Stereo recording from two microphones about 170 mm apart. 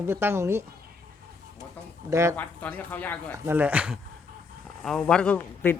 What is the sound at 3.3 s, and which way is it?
A man's voice, 10° right (ahead or behind).